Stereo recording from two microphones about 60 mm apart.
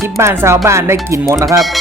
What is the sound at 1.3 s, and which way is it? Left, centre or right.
Speech, right.